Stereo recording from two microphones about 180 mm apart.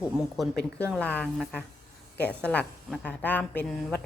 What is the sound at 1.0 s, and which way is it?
A woman's voice, 5° left (ahead or behind).